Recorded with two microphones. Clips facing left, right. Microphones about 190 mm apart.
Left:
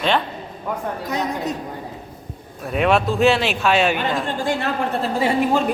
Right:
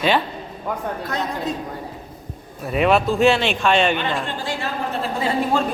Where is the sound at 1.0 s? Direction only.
15° left (ahead or behind).